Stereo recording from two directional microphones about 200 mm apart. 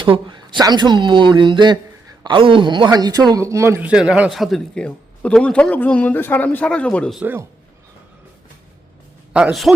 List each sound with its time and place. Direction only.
0.0 s speech: 25° right (ahead or behind); by 7.4 s 5° right (ahead or behind)
9.3 s speech: 5° right (ahead or behind)